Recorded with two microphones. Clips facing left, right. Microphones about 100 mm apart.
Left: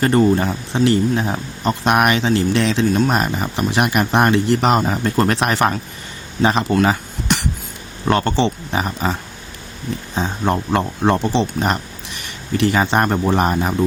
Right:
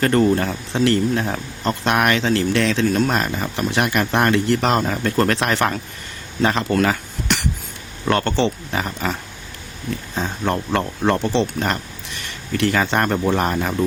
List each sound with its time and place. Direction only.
0.0 s speech: 10° left (ahead or behind)
8.0 s speech: 15° left (ahead or behind)
10.2 s speech: 20° left (ahead or behind)